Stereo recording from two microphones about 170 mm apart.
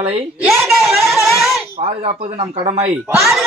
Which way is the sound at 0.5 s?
Centre (ahead or behind).